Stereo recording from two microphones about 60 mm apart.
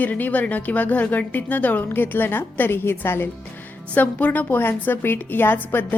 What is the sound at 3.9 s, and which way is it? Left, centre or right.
A woman's voice, left.